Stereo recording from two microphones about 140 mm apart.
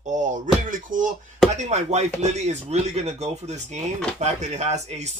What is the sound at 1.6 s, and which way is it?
Speech, 55° right (ahead or behind).